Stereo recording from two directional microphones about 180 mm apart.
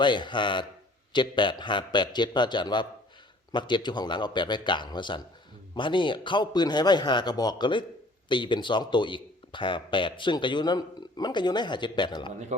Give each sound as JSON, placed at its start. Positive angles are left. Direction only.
{"t": 0.0, "sound": "speech", "side_deg": 25}